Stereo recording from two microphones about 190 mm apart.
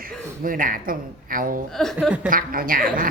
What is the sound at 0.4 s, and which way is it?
A woman's voice, 45° right (ahead or behind).